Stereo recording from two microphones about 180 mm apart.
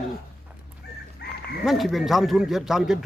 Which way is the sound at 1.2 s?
65° left (ahead or behind).